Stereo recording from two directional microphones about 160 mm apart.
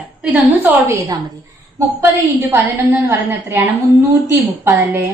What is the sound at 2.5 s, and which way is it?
A woman's voice, 15° right (ahead or behind).